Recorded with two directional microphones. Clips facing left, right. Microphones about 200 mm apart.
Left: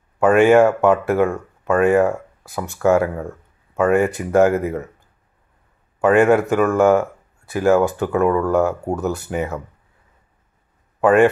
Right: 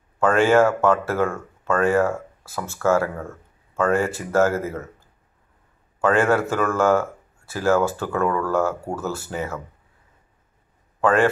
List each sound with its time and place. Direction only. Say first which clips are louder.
0.2 s speech: left 4 dB; 15° left (ahead or behind)
11.0 s a man's voice: left 5 dB; 20° left (ahead or behind)